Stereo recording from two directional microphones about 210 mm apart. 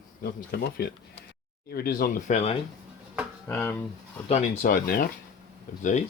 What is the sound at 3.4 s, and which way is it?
Speech, 10° left (ahead or behind).